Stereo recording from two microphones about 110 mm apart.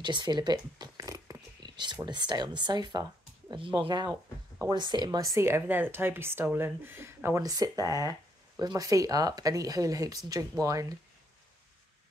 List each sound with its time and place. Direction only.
0.0 s a sound: 40° right (ahead or behind)
2.0 s speech: 40° right (ahead or behind); by 7.4 s 25° right (ahead or behind)
7.4 s speech: 35° right (ahead or behind)